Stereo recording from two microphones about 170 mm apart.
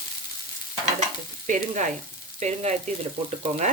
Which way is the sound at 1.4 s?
45° right (ahead or behind).